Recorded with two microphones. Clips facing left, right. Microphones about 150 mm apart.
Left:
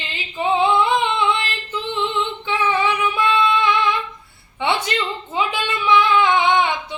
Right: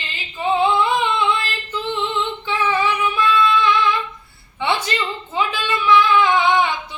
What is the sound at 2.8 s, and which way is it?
Female singing, 20° left (ahead or behind).